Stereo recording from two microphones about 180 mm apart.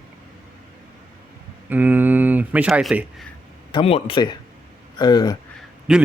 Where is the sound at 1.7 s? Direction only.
10° right (ahead or behind).